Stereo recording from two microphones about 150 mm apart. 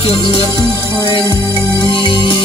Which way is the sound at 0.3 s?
35° left (ahead or behind).